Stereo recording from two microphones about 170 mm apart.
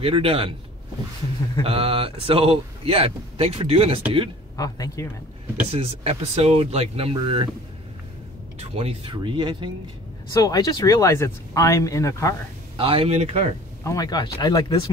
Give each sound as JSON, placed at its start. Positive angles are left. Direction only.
{"t": 0.0, "sound": "a man's voice", "side_deg": -35}
{"t": 1.6, "sound": "a man's voice", "side_deg": -35}
{"t": 4.6, "sound": "speech", "side_deg": 20}
{"t": 5.7, "sound": "a man's voice", "side_deg": -35}
{"t": 8.5, "sound": "speech", "side_deg": -35}
{"t": 10.3, "sound": "speech", "side_deg": 20}
{"t": 12.7, "sound": "a man's voice", "side_deg": -30}
{"t": 13.8, "sound": "speech", "side_deg": 25}